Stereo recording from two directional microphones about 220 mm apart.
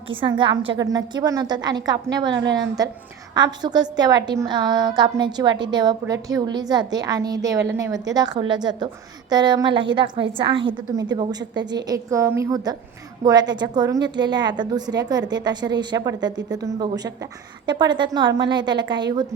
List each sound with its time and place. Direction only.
0.1 s a woman's voice: 20° right (ahead or behind)
2.2 s a woman's voice: 55° right (ahead or behind)
2.8 s a woman's voice: 15° right (ahead or behind)